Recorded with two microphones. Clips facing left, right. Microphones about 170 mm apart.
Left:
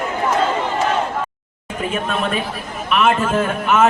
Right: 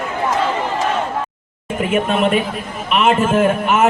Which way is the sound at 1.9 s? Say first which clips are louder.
Right 7 dB; 20° right (ahead or behind).